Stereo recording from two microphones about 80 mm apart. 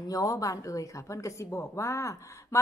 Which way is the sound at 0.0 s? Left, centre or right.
Left.